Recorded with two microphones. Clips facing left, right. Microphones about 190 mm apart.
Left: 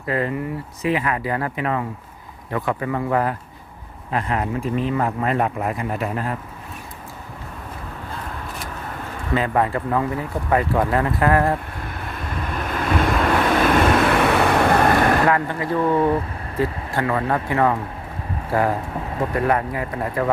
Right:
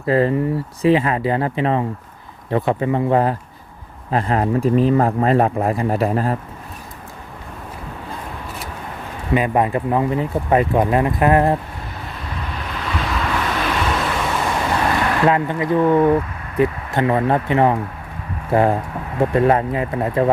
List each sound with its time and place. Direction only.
0.0 s speech: 30° right (ahead or behind)
9.3 s speech: 15° right (ahead or behind)
12.1 s vehicle: 50° left (ahead or behind)
15.3 s speech: 20° right (ahead or behind)